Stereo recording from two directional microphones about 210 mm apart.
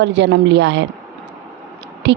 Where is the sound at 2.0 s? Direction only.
55° right (ahead or behind).